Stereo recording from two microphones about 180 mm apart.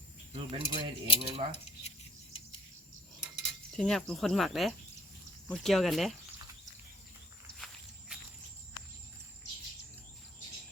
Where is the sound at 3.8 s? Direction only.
5° left (ahead or behind).